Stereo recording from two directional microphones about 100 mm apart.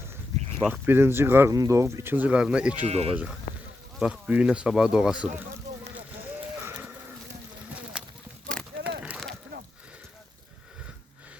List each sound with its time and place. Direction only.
0.7 s speech: 20° right (ahead or behind)
1.5 s speech: 30° right (ahead or behind)
2.1 s speech: 15° right (ahead or behind)
2.8 s speech: 90° right
4.0 s speech: 10° right (ahead or behind)
7.9 s a sound: 10° right (ahead or behind)